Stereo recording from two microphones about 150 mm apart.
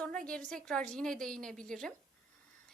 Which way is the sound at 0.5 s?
5° left (ahead or behind).